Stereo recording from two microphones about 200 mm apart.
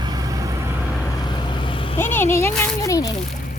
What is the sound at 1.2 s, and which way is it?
Vehicle, 20° left (ahead or behind).